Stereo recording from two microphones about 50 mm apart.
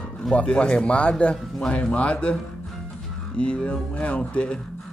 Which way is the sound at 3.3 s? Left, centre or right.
Left.